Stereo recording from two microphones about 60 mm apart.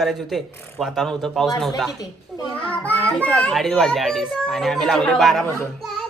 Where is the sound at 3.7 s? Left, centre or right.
Centre.